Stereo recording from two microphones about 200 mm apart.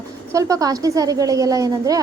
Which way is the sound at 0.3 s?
15° right (ahead or behind).